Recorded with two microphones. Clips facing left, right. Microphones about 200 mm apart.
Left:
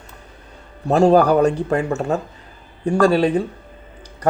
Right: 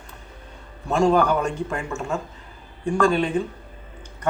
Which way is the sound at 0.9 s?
35° left (ahead or behind).